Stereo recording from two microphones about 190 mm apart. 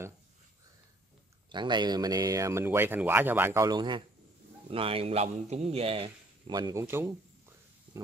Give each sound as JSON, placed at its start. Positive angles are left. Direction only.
{"t": 1.5, "sound": "a man's voice", "side_deg": -25}